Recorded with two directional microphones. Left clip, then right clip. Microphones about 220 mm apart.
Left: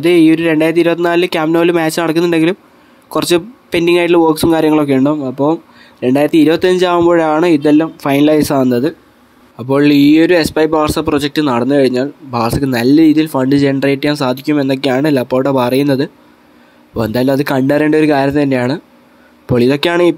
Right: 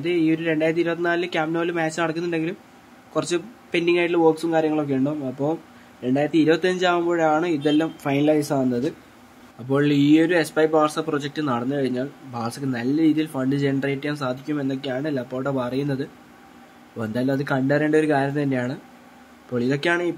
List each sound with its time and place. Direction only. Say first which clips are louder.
0.0 s speech: left 12 dB; 45° left (ahead or behind)